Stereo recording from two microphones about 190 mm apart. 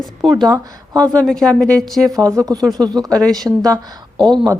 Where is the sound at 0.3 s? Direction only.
20° right (ahead or behind).